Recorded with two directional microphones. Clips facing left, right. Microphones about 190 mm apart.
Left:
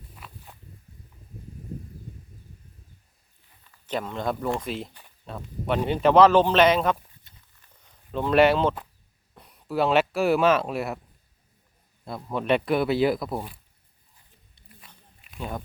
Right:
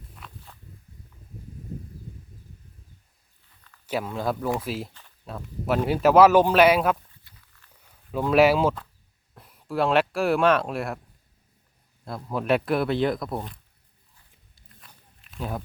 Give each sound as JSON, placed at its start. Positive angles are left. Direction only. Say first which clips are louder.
{"t": 0.2, "sound": "walk", "louder": "even", "side_deg": 5}
{"t": 3.8, "sound": "speech", "louder": "right 1 dB", "side_deg": -5}
{"t": 7.3, "sound": "walk", "louder": "even", "side_deg": 20}
{"t": 7.8, "sound": "a sound", "louder": "right 1 dB", "side_deg": -5}
{"t": 9.3, "sound": "speech", "louder": "left 1 dB", "side_deg": 0}
{"t": 12.0, "sound": "speech", "louder": "even", "side_deg": 0}
{"t": 14.5, "sound": "wild animals", "louder": "left 2 dB", "side_deg": 5}